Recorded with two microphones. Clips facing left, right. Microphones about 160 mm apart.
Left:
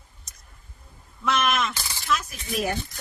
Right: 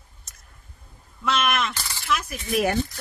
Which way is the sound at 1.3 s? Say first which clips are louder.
Even; 5° right (ahead or behind).